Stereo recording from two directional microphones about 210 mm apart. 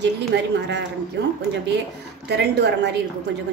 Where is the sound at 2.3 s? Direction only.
55° right (ahead or behind).